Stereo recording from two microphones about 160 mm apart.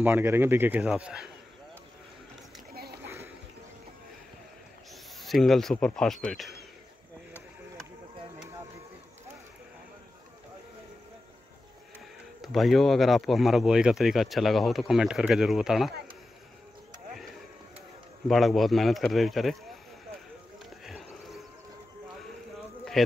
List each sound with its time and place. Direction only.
0.0 s a man's voice: 15° right (ahead or behind)
2.7 s a sound: 75° right (ahead or behind)
5.2 s speech: centre (ahead or behind)
12.4 s speech: centre (ahead or behind)
18.3 s speech: centre (ahead or behind)
20.5 s a sound: centre (ahead or behind)
23.0 s speech: centre (ahead or behind)